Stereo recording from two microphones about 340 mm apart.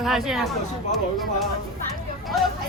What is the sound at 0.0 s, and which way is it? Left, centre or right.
Speech, centre.